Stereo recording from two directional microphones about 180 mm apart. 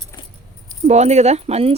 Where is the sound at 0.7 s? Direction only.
40° right (ahead or behind).